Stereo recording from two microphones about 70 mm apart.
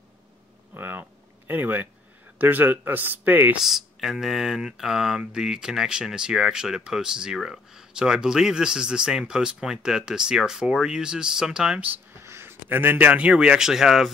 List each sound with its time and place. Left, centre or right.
0.7 s a sound: right
1.5 s speech: right
3.6 s speech: centre
12.2 s speech: right; by 14.1 s centre